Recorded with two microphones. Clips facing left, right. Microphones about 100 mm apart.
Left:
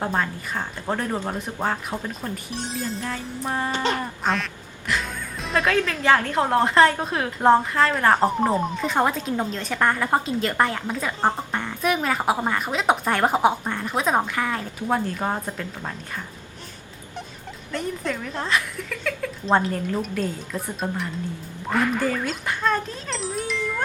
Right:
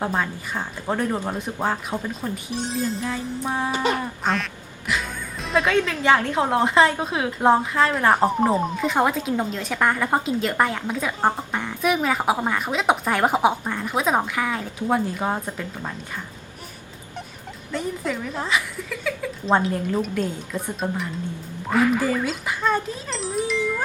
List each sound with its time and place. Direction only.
0.0 s a woman's voice: 5° right (ahead or behind)
3.8 s speech: 15° right (ahead or behind)
4.2 s a woman's voice: centre (ahead or behind)
17.7 s a woman's voice: 5° right (ahead or behind)